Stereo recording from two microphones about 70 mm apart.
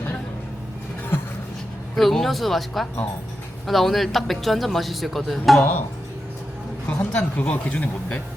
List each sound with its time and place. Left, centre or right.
2.0 s a man's voice: centre
6.9 s speech: centre